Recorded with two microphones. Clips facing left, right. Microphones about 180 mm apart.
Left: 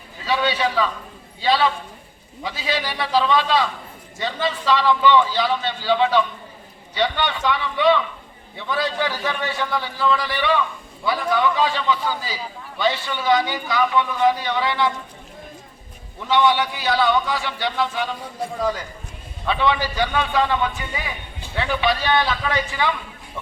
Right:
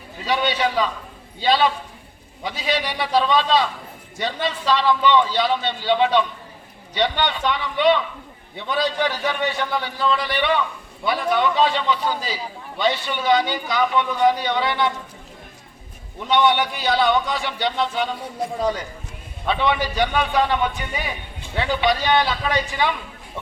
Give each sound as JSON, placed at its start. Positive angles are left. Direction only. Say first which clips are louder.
{"t": 0.3, "sound": "a man's voice", "louder": "even", "side_deg": -20}
{"t": 16.2, "sound": "a man's voice", "louder": "even", "side_deg": -20}
{"t": 19.5, "sound": "a man's voice", "louder": "even", "side_deg": -20}